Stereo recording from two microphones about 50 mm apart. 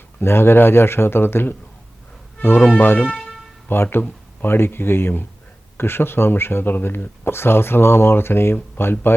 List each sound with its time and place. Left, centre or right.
0.2 s speech: left
2.6 s speech: left
3.1 s music: centre
3.7 s speech: left